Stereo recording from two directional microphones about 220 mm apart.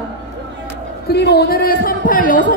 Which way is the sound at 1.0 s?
50° left (ahead or behind).